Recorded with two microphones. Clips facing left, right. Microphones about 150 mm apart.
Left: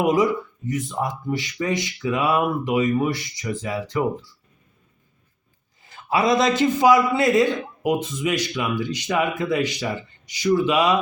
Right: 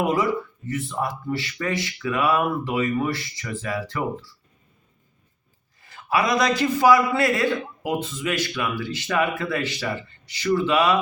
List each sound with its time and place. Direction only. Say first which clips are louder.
0.0 s a man's voice: left 3 dB; 15° left (ahead or behind)
6.1 s a man's voice: left 2 dB; 25° left (ahead or behind)